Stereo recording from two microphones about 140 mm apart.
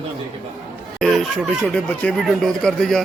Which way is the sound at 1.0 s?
Centre (ahead or behind).